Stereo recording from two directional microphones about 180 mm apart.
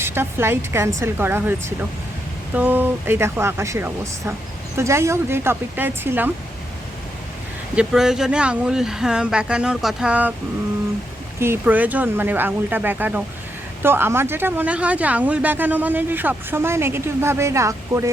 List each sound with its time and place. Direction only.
0.0 s speech: 15° right (ahead or behind)
2.6 s speech: 10° right (ahead or behind)
7.8 s speech: centre (ahead or behind)
11.3 s speech: 15° right (ahead or behind)